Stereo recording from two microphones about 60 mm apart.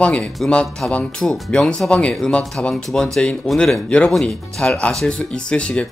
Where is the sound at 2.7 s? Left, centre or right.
Centre.